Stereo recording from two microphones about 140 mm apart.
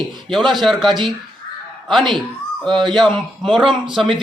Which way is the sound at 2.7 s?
Centre (ahead or behind).